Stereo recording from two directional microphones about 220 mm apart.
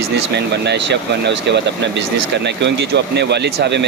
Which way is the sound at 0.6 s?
50° right (ahead or behind).